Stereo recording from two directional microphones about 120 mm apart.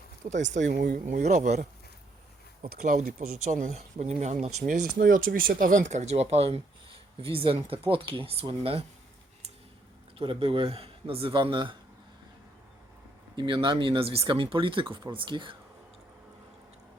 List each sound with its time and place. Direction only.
0.3 s speech: 90° right; by 8.8 s 55° right (ahead or behind)
10.2 s speech: 50° right (ahead or behind)
13.3 s speech: 45° right (ahead or behind)